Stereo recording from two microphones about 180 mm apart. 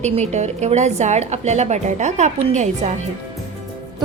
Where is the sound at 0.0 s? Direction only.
40° right (ahead or behind).